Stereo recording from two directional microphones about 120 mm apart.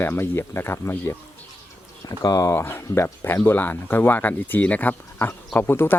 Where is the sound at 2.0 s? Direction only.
30° left (ahead or behind).